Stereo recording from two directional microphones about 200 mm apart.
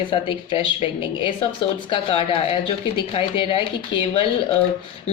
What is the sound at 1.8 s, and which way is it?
Speech, 25° left (ahead or behind).